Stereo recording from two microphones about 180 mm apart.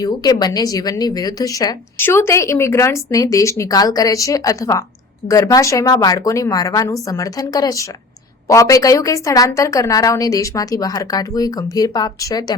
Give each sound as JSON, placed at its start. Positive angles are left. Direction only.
{"t": 0.0, "sound": "a woman's voice", "side_deg": 20}